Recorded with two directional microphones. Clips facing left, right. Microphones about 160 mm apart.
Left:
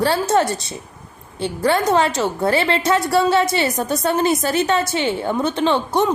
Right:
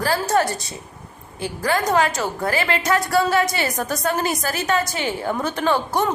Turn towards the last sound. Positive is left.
turn(degrees=20)  # may be behind; listen again after turning